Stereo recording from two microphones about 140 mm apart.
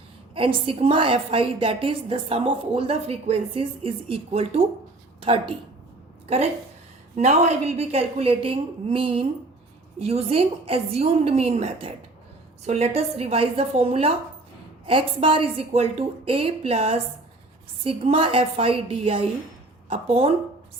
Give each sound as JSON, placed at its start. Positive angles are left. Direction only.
{"t": 0.3, "sound": "a woman's voice", "side_deg": -40}